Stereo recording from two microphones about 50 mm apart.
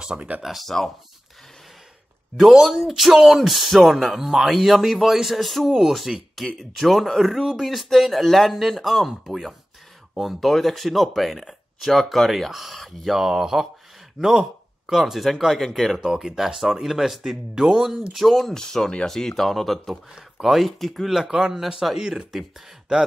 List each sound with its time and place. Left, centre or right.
0.0 s speech: right
0.4 s speech: centre
2.3 s speech: centre
6.6 s speech: centre
16.0 s speech: centre
21.1 s speech: centre